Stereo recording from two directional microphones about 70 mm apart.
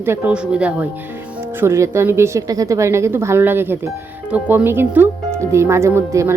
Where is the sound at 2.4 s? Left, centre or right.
Right.